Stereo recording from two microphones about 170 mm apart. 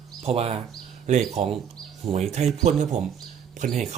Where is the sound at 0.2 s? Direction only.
35° right (ahead or behind).